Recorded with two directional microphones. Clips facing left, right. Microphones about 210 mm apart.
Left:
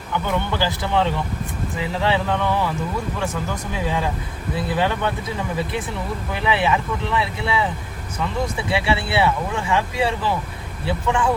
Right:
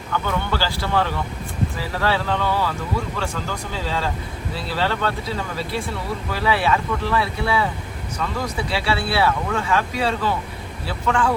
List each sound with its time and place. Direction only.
0.1 s speech: 15° left (ahead or behind)